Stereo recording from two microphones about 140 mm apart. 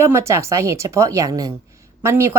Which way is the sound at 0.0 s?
20° right (ahead or behind).